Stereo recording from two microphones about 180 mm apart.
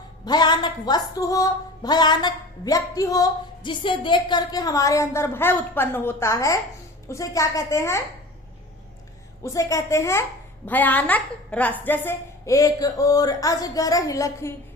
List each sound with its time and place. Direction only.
0.3 s a sound: 25° left (ahead or behind)
7.1 s a woman's voice: 15° left (ahead or behind)
9.4 s a woman's voice: 20° left (ahead or behind)